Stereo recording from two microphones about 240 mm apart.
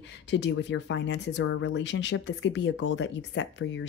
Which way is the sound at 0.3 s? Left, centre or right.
Left.